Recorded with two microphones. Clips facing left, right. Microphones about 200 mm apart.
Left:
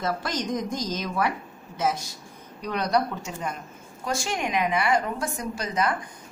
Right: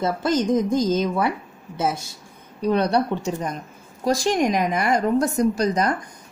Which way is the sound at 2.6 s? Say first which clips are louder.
Right 5 dB; 30° right (ahead or behind).